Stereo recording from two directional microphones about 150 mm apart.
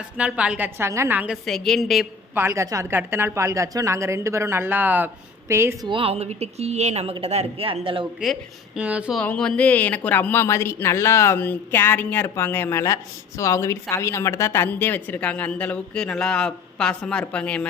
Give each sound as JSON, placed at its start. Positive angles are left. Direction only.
{"t": 0.2, "sound": "speech", "side_deg": -5}
{"t": 1.5, "sound": "speech", "side_deg": 0}
{"t": 2.3, "sound": "a woman's voice", "side_deg": -15}
{"t": 5.9, "sound": "speech", "side_deg": -40}
{"t": 8.2, "sound": "speech", "side_deg": -5}
{"t": 9.2, "sound": "a woman's voice", "side_deg": 5}